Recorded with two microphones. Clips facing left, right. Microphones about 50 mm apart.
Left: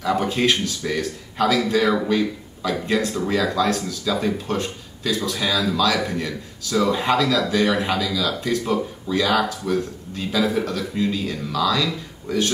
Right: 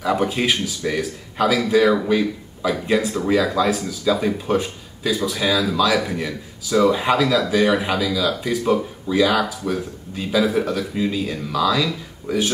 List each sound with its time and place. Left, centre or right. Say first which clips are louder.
0.0 s speech: even; centre